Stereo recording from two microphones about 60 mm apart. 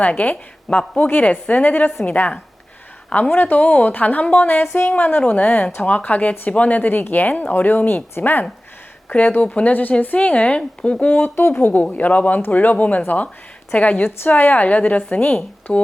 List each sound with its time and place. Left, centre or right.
0.0 s a woman's voice: left
11.3 s a woman's voice: left